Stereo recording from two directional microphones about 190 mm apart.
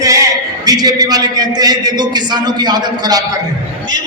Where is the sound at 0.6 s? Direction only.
20° right (ahead or behind).